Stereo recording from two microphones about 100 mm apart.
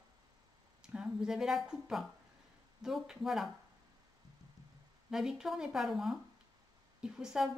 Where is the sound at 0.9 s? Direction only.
10° right (ahead or behind).